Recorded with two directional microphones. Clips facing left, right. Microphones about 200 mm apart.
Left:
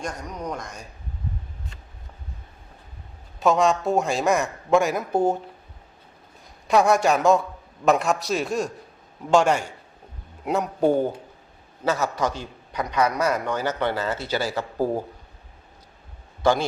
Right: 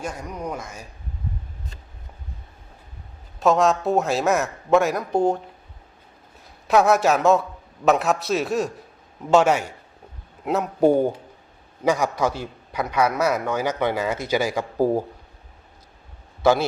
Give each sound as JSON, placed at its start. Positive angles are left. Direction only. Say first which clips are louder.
{"t": 0.0, "sound": "a man's voice", "louder": "right 1 dB", "side_deg": -5}
{"t": 3.4, "sound": "speech", "louder": "right 1 dB", "side_deg": 0}
{"t": 6.7, "sound": "a man's voice", "louder": "right 1 dB", "side_deg": -5}
{"t": 16.4, "sound": "speech", "louder": "right 2 dB", "side_deg": -5}